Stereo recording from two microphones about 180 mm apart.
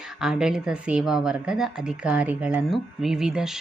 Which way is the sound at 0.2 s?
5° right (ahead or behind).